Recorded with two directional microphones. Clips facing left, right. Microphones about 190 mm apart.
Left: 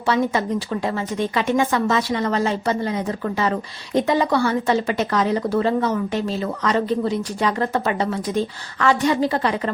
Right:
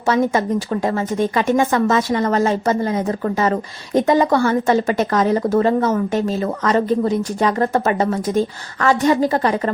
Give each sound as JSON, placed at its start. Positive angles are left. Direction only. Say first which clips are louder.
{"t": 0.0, "sound": "a woman's voice", "louder": "right 3 dB", "side_deg": -45}